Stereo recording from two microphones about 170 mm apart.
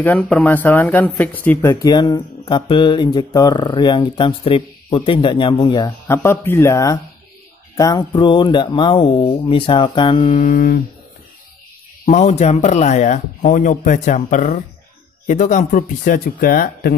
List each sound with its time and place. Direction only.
0.0 s speech: 5° left (ahead or behind); by 10.4 s 30° left (ahead or behind)
10.4 s speech: 55° left (ahead or behind)
12.1 s speech: 40° left (ahead or behind); by 16.9 s 60° left (ahead or behind)